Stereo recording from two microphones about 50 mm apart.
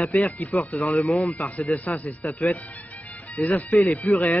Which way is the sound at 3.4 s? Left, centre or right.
Left.